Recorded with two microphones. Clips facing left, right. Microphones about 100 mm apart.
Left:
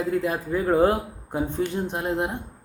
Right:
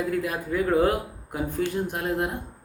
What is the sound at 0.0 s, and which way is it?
Speech, 25° left (ahead or behind).